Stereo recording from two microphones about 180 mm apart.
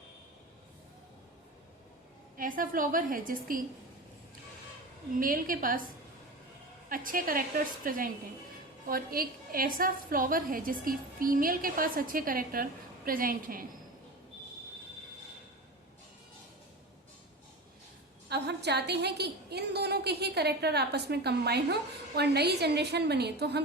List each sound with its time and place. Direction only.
2.4 s a woman's voice: 50° right (ahead or behind)
5.2 s a woman's voice: 50° right (ahead or behind)
6.8 s a woman's voice: 50° right (ahead or behind)
18.3 s a woman's voice: 65° right (ahead or behind)